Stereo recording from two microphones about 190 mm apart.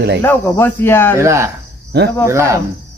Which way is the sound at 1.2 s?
15° right (ahead or behind).